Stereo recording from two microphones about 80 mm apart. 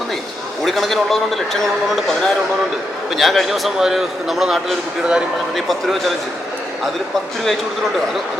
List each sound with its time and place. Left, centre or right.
0.6 s a man's voice: centre